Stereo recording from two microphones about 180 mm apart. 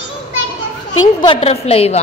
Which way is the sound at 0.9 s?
30° left (ahead or behind).